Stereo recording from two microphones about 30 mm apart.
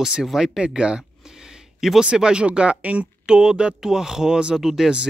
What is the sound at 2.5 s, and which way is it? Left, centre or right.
Speech, right.